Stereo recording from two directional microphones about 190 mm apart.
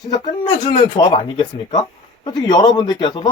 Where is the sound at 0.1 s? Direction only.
25° left (ahead or behind).